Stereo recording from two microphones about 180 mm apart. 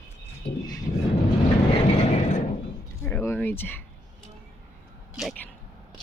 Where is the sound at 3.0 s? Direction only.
15° left (ahead or behind).